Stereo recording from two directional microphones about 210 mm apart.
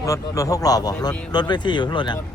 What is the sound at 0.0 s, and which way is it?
A man's voice, 15° left (ahead or behind).